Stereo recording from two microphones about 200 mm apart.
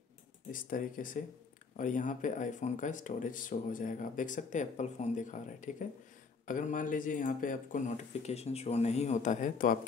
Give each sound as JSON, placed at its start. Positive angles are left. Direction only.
{"t": 0.5, "sound": "speech", "side_deg": 45}